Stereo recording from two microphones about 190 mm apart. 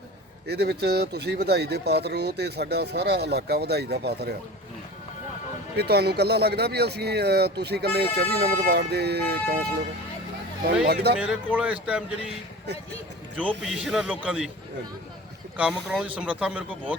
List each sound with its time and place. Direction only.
0.4 s speech: 60° right (ahead or behind)
5.7 s speech: 60° right (ahead or behind)
10.8 s speech: 60° right (ahead or behind)
11.2 s speech: 5° right (ahead or behind)
13.5 s a man's voice: centre (ahead or behind)
15.5 s speech: 5° right (ahead or behind)